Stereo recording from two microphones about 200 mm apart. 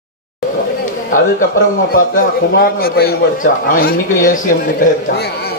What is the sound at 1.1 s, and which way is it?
Speech, 45° left (ahead or behind).